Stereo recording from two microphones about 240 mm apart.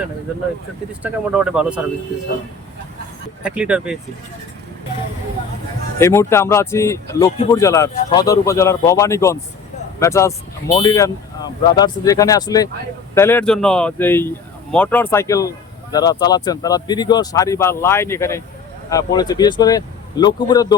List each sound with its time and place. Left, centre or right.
1.0 s speech: centre
3.4 s speech: centre
6.0 s speech: centre